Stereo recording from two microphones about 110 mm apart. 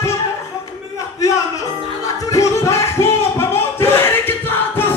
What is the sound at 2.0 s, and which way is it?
Music, 30° left (ahead or behind).